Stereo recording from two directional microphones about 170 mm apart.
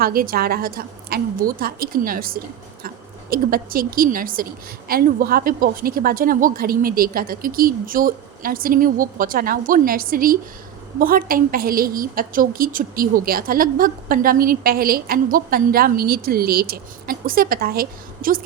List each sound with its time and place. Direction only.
0.0 s a woman's voice: 60° right (ahead or behind)